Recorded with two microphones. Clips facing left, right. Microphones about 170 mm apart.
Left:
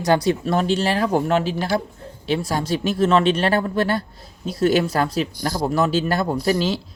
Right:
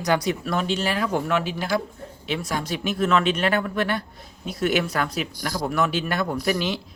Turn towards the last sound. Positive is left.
turn(degrees=30)  # may be behind; listen again after turning